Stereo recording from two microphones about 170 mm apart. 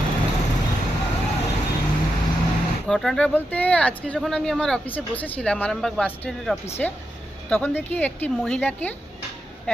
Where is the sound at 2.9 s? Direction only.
5° left (ahead or behind).